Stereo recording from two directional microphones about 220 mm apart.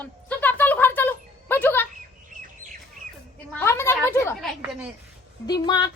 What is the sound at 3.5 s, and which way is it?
A woman's voice, 10° left (ahead or behind).